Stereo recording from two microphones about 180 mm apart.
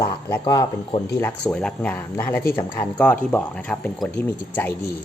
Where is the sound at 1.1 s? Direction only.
10° left (ahead or behind).